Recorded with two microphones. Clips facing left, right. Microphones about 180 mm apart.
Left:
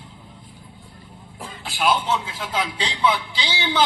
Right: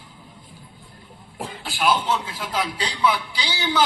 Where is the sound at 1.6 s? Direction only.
Centre (ahead or behind).